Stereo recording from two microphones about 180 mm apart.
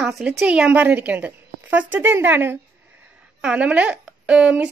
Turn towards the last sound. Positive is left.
turn(degrees=-5)  # may be behind; listen again after turning